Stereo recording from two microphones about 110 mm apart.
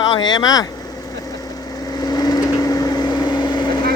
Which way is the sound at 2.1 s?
35° left (ahead or behind).